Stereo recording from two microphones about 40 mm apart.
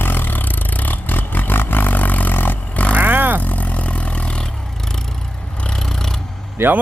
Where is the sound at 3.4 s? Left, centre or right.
Left.